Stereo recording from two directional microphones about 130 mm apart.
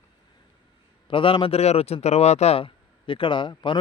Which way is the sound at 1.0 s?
45° left (ahead or behind).